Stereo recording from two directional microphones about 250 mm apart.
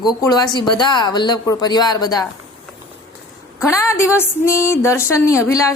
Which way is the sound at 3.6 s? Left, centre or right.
Centre.